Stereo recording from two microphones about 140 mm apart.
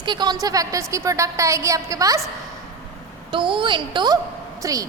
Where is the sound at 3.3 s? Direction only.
35° right (ahead or behind).